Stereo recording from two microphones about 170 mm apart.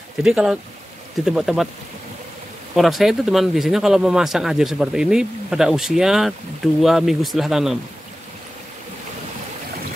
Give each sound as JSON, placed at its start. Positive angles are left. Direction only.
{"t": 0.2, "sound": "a man's voice", "side_deg": -5}
{"t": 2.7, "sound": "a man's voice", "side_deg": 0}